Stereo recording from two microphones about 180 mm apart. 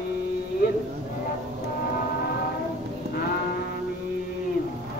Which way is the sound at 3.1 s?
55° left (ahead or behind).